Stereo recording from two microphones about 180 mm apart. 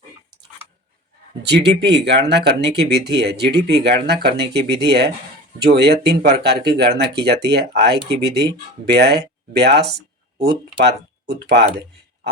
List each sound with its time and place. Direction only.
1.4 s speech: 70° right (ahead or behind)